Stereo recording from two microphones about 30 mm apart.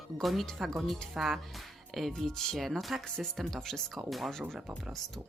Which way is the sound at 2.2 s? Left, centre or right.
Centre.